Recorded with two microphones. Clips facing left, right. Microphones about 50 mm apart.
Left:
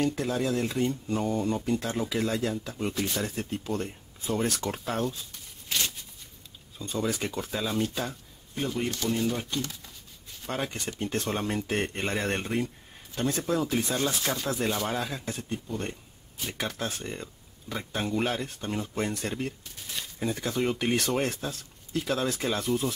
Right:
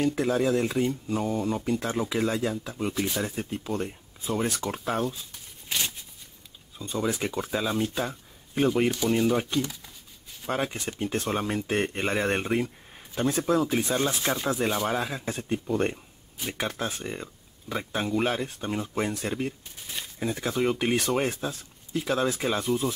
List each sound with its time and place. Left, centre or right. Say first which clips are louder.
0.0 s speech: right 3 dB; centre
6.8 s speech: right 2 dB; centre
10.4 s speech: right 3 dB; centre
15.6 s speech: right 8 dB; right
16.3 s speech: right 2 dB; centre